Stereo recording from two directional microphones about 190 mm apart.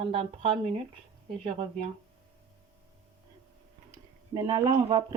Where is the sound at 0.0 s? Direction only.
30° right (ahead or behind).